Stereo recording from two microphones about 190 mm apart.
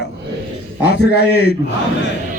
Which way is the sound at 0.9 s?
60° left (ahead or behind).